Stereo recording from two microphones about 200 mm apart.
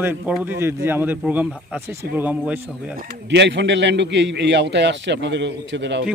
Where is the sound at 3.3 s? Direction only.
60° right (ahead or behind).